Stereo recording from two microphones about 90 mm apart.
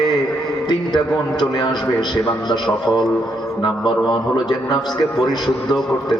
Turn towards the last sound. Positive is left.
turn(degrees=55)  # may be behind; listen again after turning